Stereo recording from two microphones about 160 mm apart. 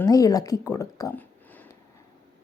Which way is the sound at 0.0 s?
20° left (ahead or behind).